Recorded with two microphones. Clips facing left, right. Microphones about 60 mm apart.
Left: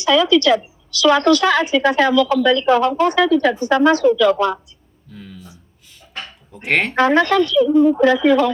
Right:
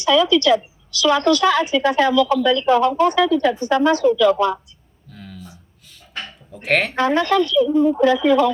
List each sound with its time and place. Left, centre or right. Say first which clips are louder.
0.0 s a woman's voice: left 1 dB; left
5.1 s a sound: left 1 dB; centre
6.5 s speech: even; centre
6.9 s a woman's voice: left 5 dB; left